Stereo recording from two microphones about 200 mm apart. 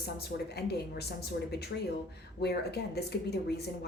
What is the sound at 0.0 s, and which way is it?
A woman's voice, 50° left (ahead or behind).